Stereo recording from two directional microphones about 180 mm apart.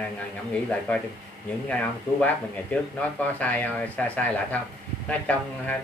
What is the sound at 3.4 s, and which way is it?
A man's voice, 10° left (ahead or behind).